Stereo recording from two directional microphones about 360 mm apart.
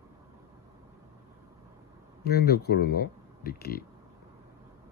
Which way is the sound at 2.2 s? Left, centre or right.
Left.